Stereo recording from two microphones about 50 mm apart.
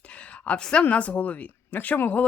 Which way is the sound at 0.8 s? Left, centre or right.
Left.